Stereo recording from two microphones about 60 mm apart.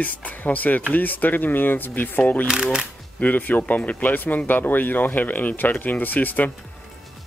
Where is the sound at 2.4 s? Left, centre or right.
Centre.